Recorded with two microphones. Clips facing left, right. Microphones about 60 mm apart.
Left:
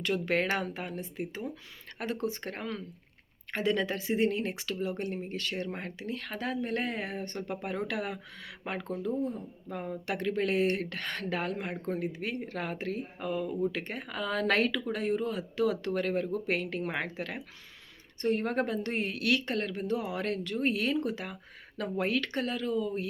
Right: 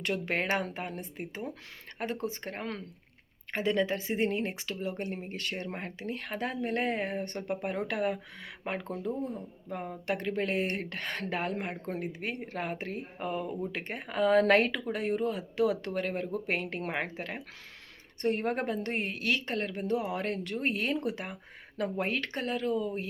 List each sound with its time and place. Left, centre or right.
0.1 s speech: right
9.6 s speech: centre
10.1 s speech: right
12.4 s speech: right